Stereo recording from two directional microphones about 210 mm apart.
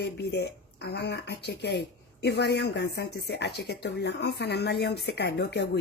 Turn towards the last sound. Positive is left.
turn(degrees=50)  # may be behind; listen again after turning